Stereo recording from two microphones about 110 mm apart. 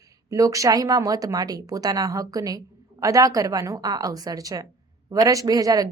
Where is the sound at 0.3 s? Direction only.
30° right (ahead or behind).